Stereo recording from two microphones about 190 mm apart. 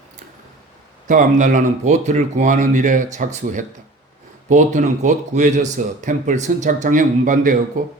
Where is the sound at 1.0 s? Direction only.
40° right (ahead or behind).